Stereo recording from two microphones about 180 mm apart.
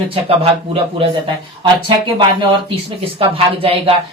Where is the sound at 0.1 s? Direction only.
30° right (ahead or behind).